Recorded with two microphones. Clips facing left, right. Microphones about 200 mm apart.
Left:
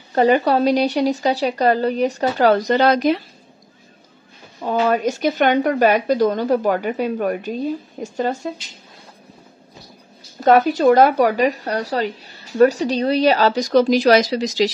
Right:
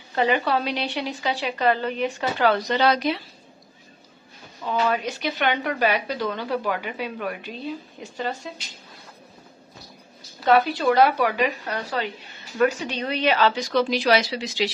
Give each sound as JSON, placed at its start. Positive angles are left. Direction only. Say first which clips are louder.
{"t": 0.1, "sound": "speech", "louder": "left 7 dB", "side_deg": 40}
{"t": 4.6, "sound": "speech", "louder": "left 5 dB", "side_deg": 45}
{"t": 10.4, "sound": "speech", "louder": "left 6 dB", "side_deg": 45}